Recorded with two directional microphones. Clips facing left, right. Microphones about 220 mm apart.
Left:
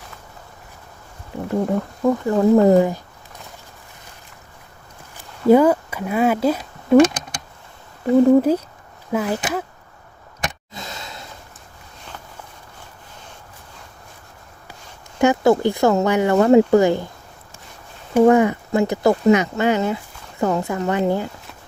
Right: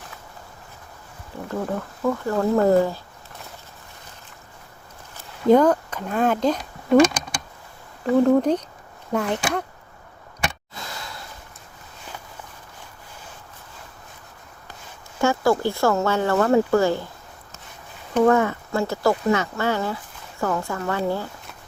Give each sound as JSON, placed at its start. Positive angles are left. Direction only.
{"t": 1.5, "sound": "speech", "side_deg": 20}
{"t": 5.1, "sound": "speech", "side_deg": 10}
{"t": 8.1, "sound": "speech", "side_deg": 5}
{"t": 10.8, "sound": "a sound", "side_deg": 20}
{"t": 15.2, "sound": "speech", "side_deg": 20}
{"t": 18.2, "sound": "a woman's voice", "side_deg": 15}